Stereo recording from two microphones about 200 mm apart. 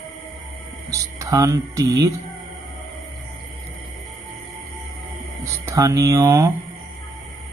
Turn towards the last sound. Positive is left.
turn(degrees=-15)  # may be behind; listen again after turning